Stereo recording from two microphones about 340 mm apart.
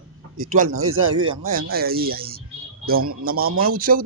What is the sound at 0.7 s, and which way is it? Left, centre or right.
Speech, right.